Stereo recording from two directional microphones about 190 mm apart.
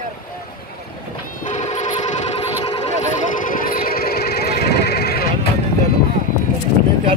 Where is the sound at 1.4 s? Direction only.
40° left (ahead or behind); by 5.3 s 55° left (ahead or behind).